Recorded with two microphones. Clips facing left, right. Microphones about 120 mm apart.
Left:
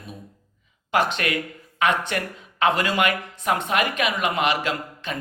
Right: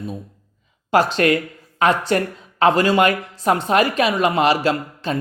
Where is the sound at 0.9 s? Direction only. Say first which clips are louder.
Right 7 dB; 35° right (ahead or behind).